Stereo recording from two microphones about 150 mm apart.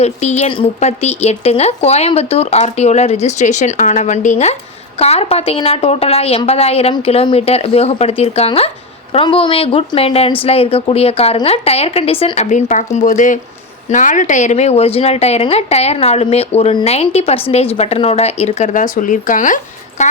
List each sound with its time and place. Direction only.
0.0 s speech: 45° left (ahead or behind)